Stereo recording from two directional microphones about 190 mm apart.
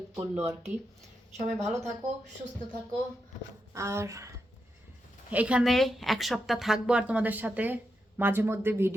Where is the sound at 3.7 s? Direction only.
15° right (ahead or behind).